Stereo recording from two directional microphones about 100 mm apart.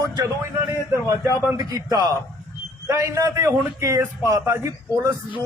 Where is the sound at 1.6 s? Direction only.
40° right (ahead or behind).